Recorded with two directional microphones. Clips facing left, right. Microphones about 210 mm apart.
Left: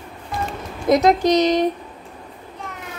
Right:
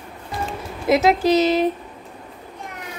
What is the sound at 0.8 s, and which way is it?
Speech, 5° right (ahead or behind).